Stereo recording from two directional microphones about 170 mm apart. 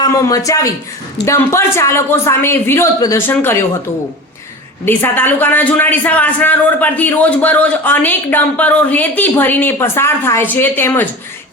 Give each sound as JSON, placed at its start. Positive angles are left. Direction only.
{"t": 0.0, "sound": "a man's voice", "side_deg": 20}
{"t": 4.9, "sound": "a man's voice", "side_deg": 10}